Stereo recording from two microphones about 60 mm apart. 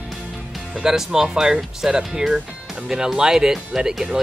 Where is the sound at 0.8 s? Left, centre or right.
Centre.